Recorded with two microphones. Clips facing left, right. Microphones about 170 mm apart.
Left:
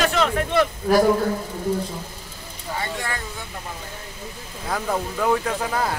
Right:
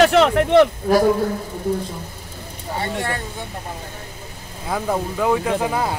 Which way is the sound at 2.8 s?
30° right (ahead or behind).